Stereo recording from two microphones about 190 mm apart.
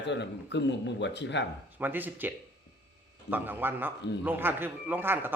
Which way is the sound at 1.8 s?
10° right (ahead or behind).